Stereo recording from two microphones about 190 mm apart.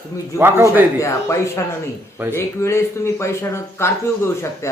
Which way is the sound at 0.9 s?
15° left (ahead or behind).